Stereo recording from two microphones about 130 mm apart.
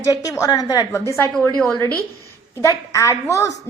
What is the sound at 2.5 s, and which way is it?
Speech, 25° left (ahead or behind).